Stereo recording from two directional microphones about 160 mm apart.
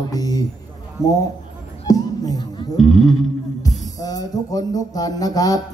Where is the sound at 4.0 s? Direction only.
25° left (ahead or behind).